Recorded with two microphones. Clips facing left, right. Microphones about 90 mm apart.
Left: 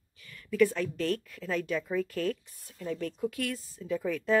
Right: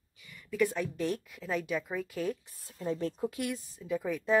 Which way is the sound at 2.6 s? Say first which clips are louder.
Right 1 dB; 25° right (ahead or behind).